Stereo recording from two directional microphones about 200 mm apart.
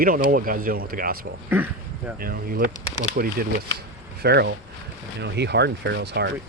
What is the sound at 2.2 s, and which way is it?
Speech, 45° right (ahead or behind).